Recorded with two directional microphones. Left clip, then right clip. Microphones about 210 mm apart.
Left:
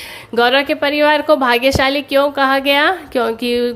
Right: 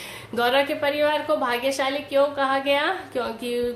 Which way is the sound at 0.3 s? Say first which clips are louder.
Left 8 dB; 40° left (ahead or behind).